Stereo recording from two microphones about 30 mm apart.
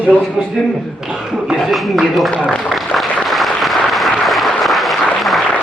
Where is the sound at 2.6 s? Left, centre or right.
Centre.